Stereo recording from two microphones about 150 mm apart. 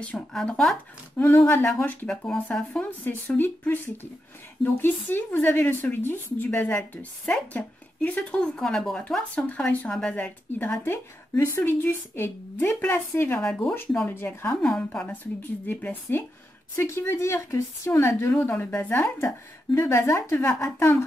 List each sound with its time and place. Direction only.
0.0 s speech: 5° left (ahead or behind)
1.1 s a woman's voice: 15° left (ahead or behind)